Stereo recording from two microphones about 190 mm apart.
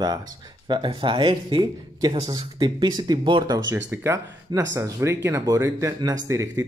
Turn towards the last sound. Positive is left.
turn(degrees=-15)  # may be behind; listen again after turning